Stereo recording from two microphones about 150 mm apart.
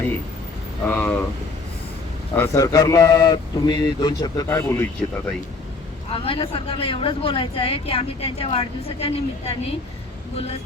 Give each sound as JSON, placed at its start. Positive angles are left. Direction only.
{"t": 0.9, "sound": "speech", "side_deg": 10}
{"t": 2.3, "sound": "a man's voice", "side_deg": 15}
{"t": 6.1, "sound": "speech", "side_deg": 40}